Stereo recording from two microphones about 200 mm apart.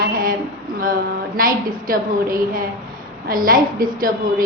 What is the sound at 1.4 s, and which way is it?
A woman's voice, 45° right (ahead or behind).